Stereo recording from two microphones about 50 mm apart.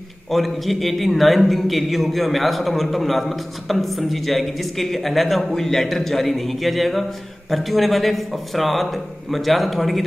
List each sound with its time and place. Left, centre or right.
0.3 s a man's voice: centre